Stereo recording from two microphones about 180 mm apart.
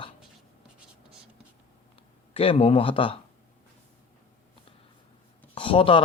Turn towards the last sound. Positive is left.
turn(degrees=30)  # may be behind; listen again after turning